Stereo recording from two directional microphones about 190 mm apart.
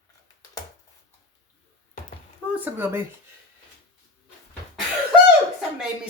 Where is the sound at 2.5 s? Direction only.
10° right (ahead or behind).